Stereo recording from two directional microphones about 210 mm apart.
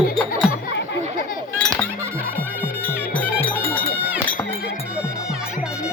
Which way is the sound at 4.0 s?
5° right (ahead or behind).